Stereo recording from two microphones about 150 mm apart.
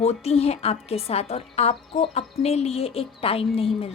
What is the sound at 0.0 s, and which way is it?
A woman's voice, 45° left (ahead or behind).